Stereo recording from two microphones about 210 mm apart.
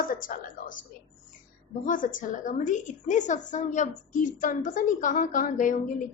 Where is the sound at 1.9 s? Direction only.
40° left (ahead or behind).